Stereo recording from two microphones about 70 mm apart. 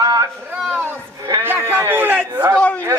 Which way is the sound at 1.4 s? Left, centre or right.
Right.